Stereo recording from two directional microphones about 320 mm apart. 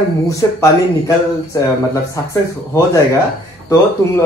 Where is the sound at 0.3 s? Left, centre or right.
Centre.